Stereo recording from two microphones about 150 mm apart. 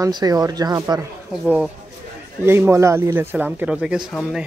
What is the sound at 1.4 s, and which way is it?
Speech, 10° right (ahead or behind).